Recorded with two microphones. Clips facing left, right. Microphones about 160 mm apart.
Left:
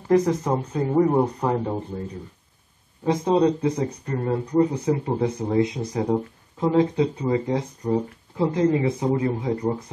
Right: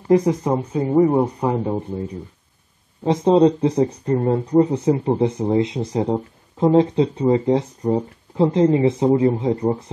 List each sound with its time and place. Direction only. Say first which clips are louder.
0.1 s speech: right 3 dB; 15° right (ahead or behind)
3.0 s speech: right 5 dB; 25° right (ahead or behind)